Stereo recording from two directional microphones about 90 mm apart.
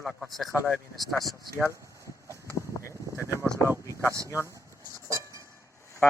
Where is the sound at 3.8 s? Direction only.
35° left (ahead or behind).